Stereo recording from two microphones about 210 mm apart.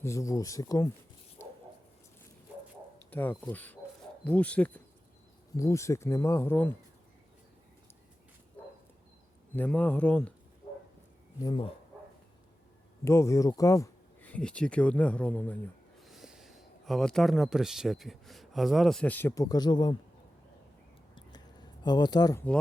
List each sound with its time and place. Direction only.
0.0 s speech: 15° left (ahead or behind)
3.1 s speech: 10° left (ahead or behind)
9.6 s speech: 5° left (ahead or behind)
11.3 s speech: 20° left (ahead or behind)
13.1 s speech: 15° left (ahead or behind)
21.2 s a sound: 20° left (ahead or behind)